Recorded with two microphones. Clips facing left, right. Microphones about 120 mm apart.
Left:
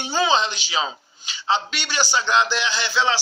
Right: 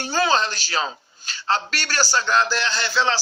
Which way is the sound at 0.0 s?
15° left (ahead or behind).